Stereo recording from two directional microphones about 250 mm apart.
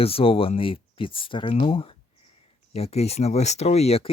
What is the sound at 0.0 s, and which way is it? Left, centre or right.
Speech, left.